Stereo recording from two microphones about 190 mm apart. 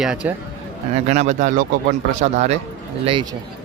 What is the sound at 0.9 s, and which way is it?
Speech, 35° right (ahead or behind).